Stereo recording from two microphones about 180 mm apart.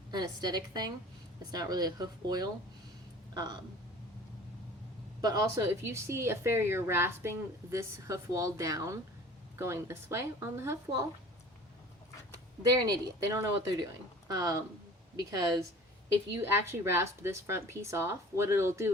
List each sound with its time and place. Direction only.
0.1 s a woman's voice: 25° right (ahead or behind)
5.2 s a woman's voice: 20° right (ahead or behind)
12.3 s a woman's voice: 20° right (ahead or behind)